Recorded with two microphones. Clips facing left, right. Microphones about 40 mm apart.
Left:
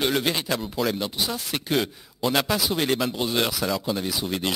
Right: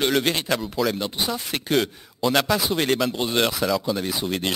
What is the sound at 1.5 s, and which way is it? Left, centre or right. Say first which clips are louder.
Speech: right 3 dB; centre.